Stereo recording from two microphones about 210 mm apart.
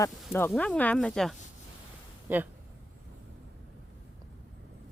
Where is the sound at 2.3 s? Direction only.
10° right (ahead or behind).